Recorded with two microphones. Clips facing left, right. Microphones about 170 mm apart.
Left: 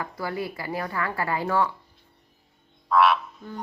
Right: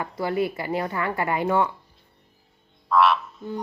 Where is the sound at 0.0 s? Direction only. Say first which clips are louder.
Right 5 dB; 25° right (ahead or behind).